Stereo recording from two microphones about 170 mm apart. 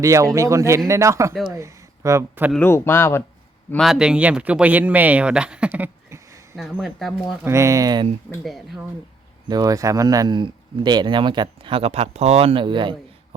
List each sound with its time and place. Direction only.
0.0 s speech: 20° right (ahead or behind)
2.5 s speech: 10° left (ahead or behind)
3.7 s speech: centre (ahead or behind); by 6.6 s 15° right (ahead or behind)
6.6 s speech: centre (ahead or behind)
7.4 s speech: 15° right (ahead or behind)
9.5 s speech: 20° right (ahead or behind)